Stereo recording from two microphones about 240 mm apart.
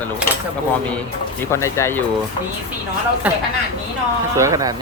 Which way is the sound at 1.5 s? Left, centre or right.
Centre.